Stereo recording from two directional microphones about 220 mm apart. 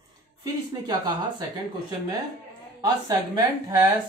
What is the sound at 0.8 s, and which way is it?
Speech, 20° right (ahead or behind).